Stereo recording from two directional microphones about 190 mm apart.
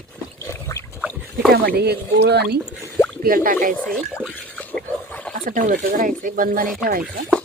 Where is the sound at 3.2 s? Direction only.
45° right (ahead or behind).